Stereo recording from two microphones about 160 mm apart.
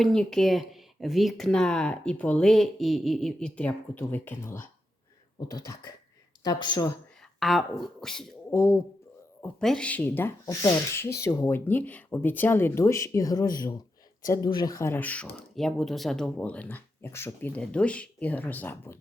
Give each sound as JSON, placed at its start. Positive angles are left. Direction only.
{"t": 0.0, "sound": "speech", "side_deg": 5}
{"t": 7.3, "sound": "speech", "side_deg": 0}
{"t": 8.4, "sound": "speech", "side_deg": 15}
{"t": 9.6, "sound": "speech", "side_deg": 5}